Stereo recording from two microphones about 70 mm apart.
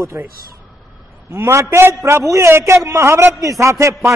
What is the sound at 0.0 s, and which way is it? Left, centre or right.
Speech, right.